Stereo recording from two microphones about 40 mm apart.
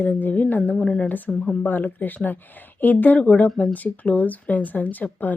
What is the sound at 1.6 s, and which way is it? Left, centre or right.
Speech, left.